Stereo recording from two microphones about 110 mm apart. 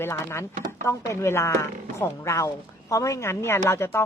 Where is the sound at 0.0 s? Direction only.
25° left (ahead or behind).